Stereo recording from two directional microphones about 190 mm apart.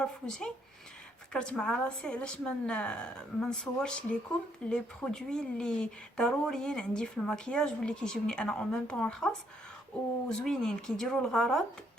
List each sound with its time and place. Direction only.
0.0 s speech: 5° left (ahead or behind)